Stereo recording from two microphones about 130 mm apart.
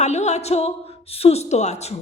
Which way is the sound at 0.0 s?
60° left (ahead or behind).